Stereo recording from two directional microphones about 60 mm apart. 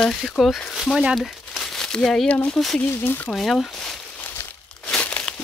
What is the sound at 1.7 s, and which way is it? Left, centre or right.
Crumpling, centre.